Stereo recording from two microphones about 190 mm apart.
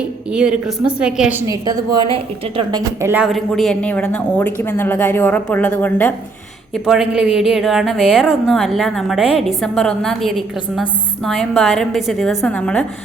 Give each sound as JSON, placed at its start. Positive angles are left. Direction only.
{"t": 0.3, "sound": "a woman's voice", "side_deg": -5}
{"t": 3.0, "sound": "speech", "side_deg": -10}
{"t": 6.8, "sound": "a woman's voice", "side_deg": -5}